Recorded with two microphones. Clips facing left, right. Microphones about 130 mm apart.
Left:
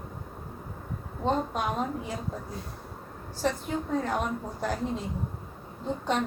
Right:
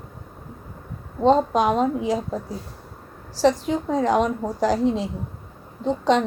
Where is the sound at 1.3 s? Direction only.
90° right.